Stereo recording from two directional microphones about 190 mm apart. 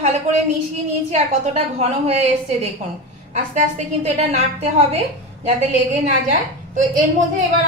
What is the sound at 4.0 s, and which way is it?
Speech, 35° right (ahead or behind).